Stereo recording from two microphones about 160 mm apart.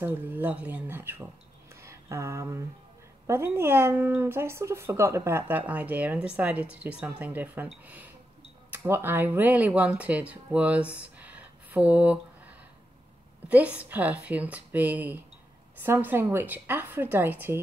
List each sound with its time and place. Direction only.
0.0 s speech: 10° right (ahead or behind)
1.8 s a sound: 20° right (ahead or behind)
3.3 s speech: 15° right (ahead or behind)
13.5 s speech: 10° right (ahead or behind)